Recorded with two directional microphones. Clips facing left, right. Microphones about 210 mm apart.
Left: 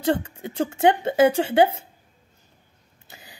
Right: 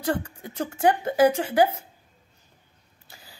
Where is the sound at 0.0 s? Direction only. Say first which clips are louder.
Left 4 dB; 25° left (ahead or behind).